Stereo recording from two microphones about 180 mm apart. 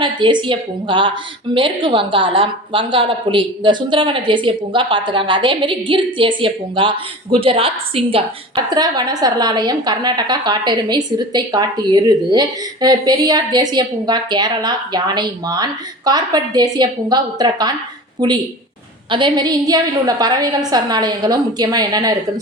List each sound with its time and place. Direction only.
0.0 s a woman's voice: 25° right (ahead or behind)